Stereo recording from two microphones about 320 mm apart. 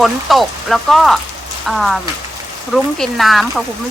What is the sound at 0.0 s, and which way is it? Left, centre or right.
Speech, centre.